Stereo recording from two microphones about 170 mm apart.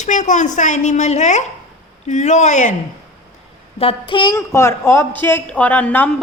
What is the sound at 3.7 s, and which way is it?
Child singing, 30° left (ahead or behind).